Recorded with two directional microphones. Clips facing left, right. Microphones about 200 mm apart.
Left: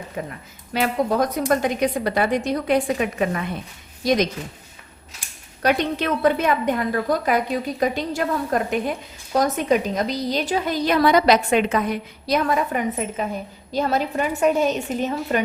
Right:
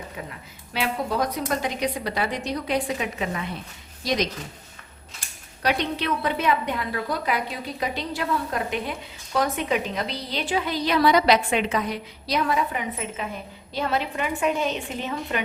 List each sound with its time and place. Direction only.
0.2 s a woman's voice: 45° left (ahead or behind)
5.6 s a woman's voice: 50° left (ahead or behind)